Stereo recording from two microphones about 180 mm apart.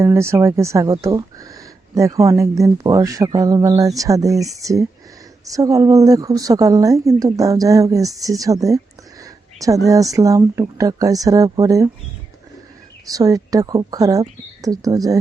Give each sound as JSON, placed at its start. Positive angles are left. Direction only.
{"t": 0.0, "sound": "a woman's voice", "side_deg": -15}
{"t": 13.1, "sound": "a woman's voice", "side_deg": -20}